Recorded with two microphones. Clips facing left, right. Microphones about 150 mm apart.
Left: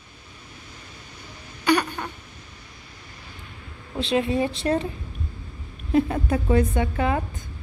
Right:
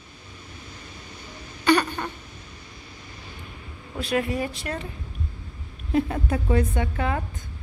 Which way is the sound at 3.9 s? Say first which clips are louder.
Left 3 dB; 25° left (ahead or behind).